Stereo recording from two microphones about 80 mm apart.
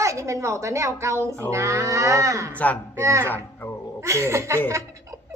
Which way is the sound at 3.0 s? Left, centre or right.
Right.